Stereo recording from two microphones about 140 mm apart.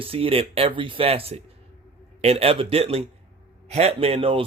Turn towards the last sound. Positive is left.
turn(degrees=-40)  # may be behind; listen again after turning